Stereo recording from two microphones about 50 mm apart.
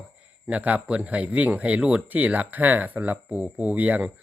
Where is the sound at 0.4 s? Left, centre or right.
Right.